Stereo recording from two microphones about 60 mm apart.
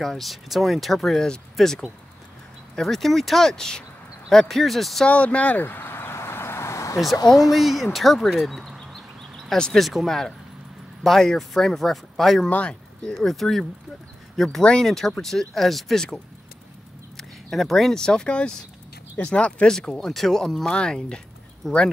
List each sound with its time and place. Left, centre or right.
0.0 s speech: centre
5.0 s vehicle: left
7.5 s a sound: centre
9.8 s speech: centre
12.4 s speech: left
13.1 s speech: centre
14.6 s speech: centre
14.9 s speech: centre
17.2 s speech: centre
21.6 s speech: centre